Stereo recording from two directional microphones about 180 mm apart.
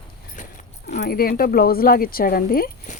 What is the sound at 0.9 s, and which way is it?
Speech, 55° left (ahead or behind).